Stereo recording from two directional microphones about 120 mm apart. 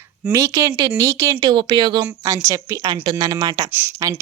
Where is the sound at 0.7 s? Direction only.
40° right (ahead or behind).